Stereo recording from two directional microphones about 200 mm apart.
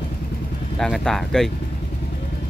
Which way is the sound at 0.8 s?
Centre (ahead or behind).